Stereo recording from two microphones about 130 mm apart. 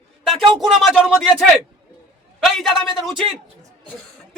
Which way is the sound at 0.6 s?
Centre (ahead or behind).